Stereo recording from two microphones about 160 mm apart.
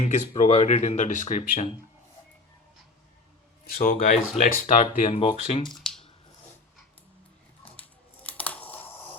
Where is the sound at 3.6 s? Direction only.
60° left (ahead or behind).